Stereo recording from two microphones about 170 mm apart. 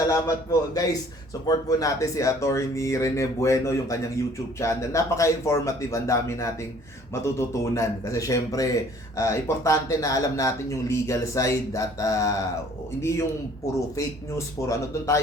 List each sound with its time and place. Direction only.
0.1 s a man's voice: 20° left (ahead or behind)